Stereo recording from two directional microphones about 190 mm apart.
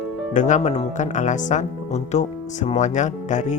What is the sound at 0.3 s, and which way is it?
Speech, 40° left (ahead or behind).